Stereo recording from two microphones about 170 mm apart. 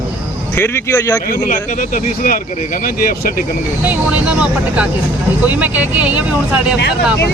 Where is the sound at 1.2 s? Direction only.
55° left (ahead or behind).